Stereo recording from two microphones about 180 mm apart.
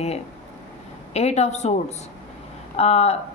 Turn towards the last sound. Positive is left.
turn(degrees=35)  # may be behind; listen again after turning